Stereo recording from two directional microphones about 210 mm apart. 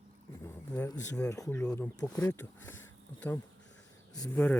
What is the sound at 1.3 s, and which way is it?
Speech, 15° left (ahead or behind).